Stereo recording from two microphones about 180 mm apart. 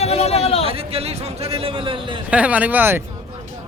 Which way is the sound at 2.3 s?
10° right (ahead or behind).